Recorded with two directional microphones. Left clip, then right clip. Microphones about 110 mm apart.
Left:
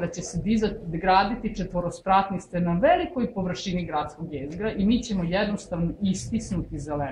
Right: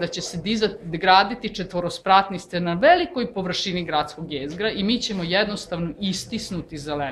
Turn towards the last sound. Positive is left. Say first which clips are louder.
# right 3 dB
turn(degrees=-30)  # may be behind; listen again after turning